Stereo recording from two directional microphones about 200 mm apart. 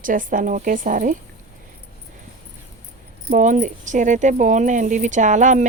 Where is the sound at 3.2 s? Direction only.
40° right (ahead or behind).